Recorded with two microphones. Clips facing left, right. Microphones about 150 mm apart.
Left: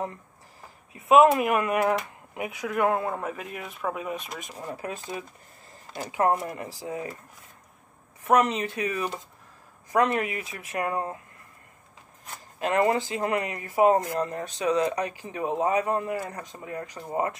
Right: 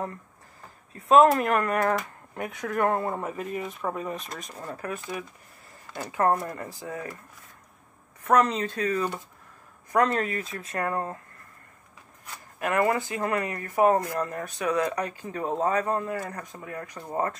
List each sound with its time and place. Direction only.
0.9 s speech: 5° left (ahead or behind)
4.6 s speech: 15° left (ahead or behind)
5.1 s speech: 30° left (ahead or behind)
5.9 s speech: 15° left (ahead or behind)
8.2 s speech: 20° left (ahead or behind)
12.5 s speech: 25° left (ahead or behind)
16.9 s speech: 10° left (ahead or behind)